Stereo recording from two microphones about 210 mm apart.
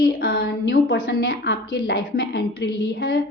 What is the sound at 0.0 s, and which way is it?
A woman's voice, 50° left (ahead or behind).